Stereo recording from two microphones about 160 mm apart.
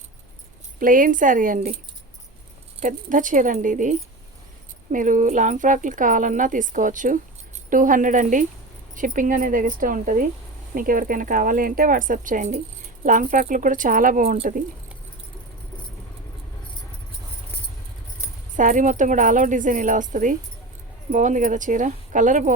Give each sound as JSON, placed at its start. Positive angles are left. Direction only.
{"t": 0.8, "sound": "speech", "side_deg": -60}
{"t": 2.8, "sound": "speech", "side_deg": -55}
{"t": 18.5, "sound": "speech", "side_deg": -55}